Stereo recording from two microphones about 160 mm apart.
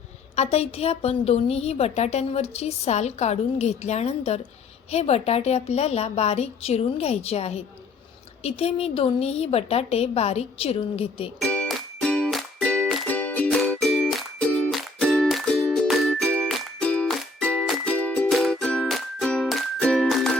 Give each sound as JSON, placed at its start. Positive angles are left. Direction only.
{"t": 0.3, "sound": "a woman's voice", "side_deg": 40}
{"t": 11.3, "sound": "music", "side_deg": 10}